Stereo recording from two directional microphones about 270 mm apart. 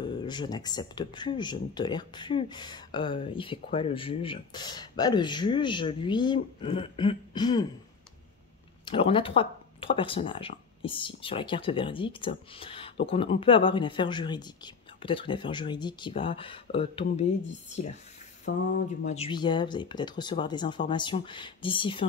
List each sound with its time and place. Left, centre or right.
0.0 s speech: centre
8.8 s speech: centre
18.5 s a sound: left
19.0 s speech: left